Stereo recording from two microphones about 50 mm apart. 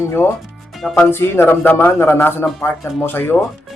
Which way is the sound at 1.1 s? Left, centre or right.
Left.